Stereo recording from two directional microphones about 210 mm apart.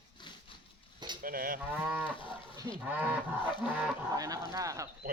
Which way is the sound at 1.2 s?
40° right (ahead or behind).